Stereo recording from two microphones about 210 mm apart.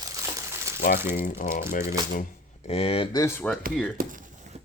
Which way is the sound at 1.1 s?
40° left (ahead or behind).